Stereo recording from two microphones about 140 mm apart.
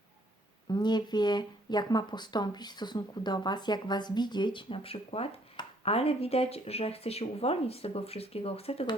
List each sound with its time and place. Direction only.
0.7 s speech: 30° left (ahead or behind)